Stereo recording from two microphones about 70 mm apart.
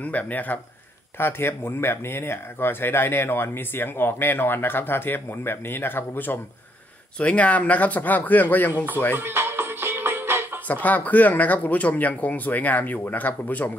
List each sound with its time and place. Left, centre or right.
0.0 s speech: left
7.2 s speech: centre
9.1 s music: right
10.7 s speech: left